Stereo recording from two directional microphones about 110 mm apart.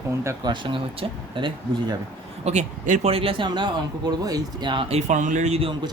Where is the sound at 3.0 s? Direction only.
60° right (ahead or behind); by 4.8 s 45° right (ahead or behind).